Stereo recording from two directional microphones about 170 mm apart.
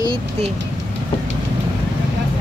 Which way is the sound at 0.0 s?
30° right (ahead or behind).